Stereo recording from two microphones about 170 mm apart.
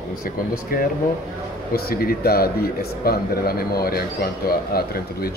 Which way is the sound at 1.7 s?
65° left (ahead or behind).